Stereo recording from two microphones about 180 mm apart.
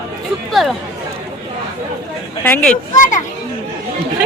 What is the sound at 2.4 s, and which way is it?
Speech, 5° left (ahead or behind).